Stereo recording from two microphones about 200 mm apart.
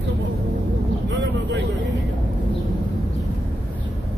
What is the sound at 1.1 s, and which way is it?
Speech, 65° right (ahead or behind).